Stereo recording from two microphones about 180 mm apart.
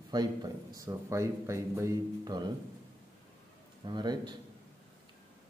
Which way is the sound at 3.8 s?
25° right (ahead or behind).